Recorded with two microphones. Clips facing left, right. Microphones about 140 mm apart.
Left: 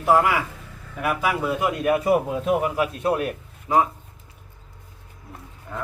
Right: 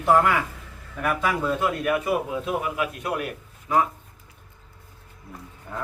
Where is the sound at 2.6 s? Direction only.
30° left (ahead or behind).